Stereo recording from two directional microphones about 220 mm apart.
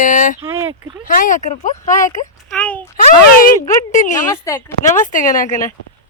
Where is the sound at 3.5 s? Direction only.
15° left (ahead or behind).